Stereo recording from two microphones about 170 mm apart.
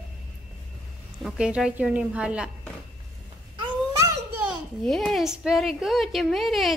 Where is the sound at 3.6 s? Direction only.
20° right (ahead or behind).